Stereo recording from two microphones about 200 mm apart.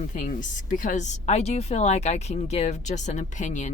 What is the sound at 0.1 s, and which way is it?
Speech, 40° left (ahead or behind).